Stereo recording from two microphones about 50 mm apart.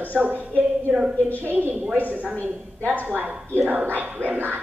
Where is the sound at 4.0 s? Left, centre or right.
Right.